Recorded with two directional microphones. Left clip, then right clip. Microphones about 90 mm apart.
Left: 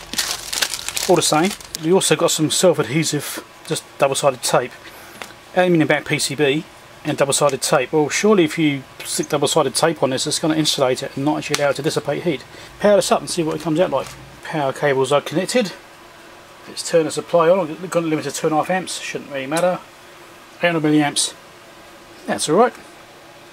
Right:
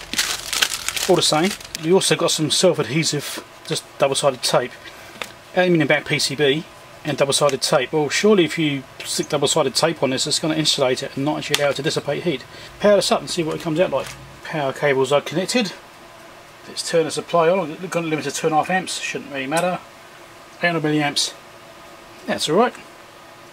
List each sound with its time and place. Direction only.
0.1 s crumpling: 5° left (ahead or behind)
1.0 s speech: 15° left (ahead or behind)
17.1 s speech: 20° left (ahead or behind)
20.6 s speech: 20° left (ahead or behind)
22.2 s speech: 20° left (ahead or behind)